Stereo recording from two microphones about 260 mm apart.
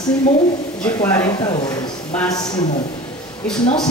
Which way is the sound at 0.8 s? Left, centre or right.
Centre.